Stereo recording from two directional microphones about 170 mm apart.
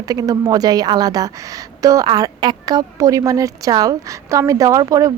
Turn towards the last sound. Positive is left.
turn(degrees=-20)  # may be behind; listen again after turning